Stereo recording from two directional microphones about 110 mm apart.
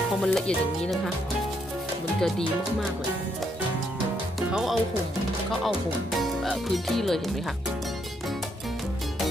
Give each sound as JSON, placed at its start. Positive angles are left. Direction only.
{"t": 0.2, "sound": "speech", "side_deg": 5}
{"t": 4.4, "sound": "speech", "side_deg": -5}